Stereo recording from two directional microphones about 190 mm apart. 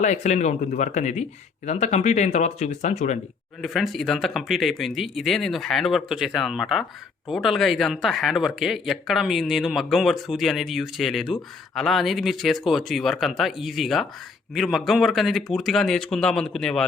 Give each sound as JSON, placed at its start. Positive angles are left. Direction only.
{"t": 0.0, "sound": "speech", "side_deg": 40}
{"t": 3.6, "sound": "speech", "side_deg": 0}